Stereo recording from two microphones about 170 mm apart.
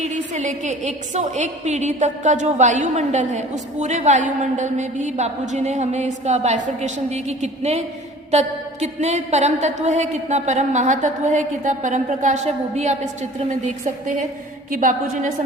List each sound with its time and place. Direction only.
0.0 s a woman's voice: 45° right (ahead or behind)